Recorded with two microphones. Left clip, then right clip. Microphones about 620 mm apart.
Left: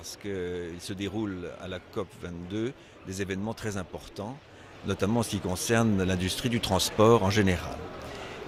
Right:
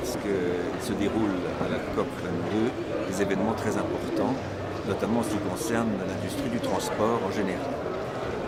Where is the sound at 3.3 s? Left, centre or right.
Left.